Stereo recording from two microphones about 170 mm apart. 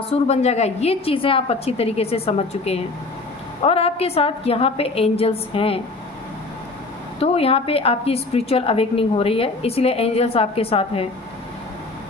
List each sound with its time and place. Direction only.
0.3 s a woman's voice: 40° left (ahead or behind)
7.2 s a woman's voice: 35° left (ahead or behind)